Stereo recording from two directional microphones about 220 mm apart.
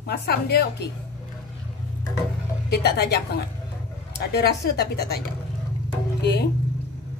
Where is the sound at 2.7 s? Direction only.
45° left (ahead or behind).